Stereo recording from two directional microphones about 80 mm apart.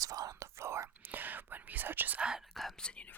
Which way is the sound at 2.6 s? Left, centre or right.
Centre.